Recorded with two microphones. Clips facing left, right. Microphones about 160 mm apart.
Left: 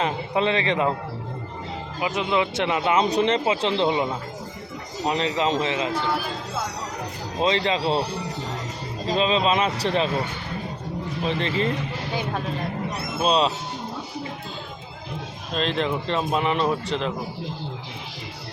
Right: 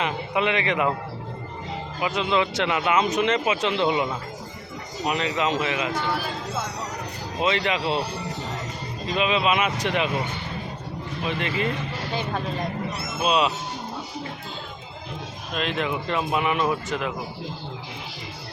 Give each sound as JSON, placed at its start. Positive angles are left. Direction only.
{"t": 0.0, "sound": "speech", "side_deg": 30}
{"t": 2.0, "sound": "speech", "side_deg": 25}
{"t": 7.3, "sound": "speech", "side_deg": 30}
{"t": 9.0, "sound": "speech", "side_deg": 30}
{"t": 11.3, "sound": "speech", "side_deg": 30}
{"t": 12.1, "sound": "speech", "side_deg": 10}
{"t": 13.1, "sound": "speech", "side_deg": 35}
{"t": 15.5, "sound": "speech", "side_deg": 35}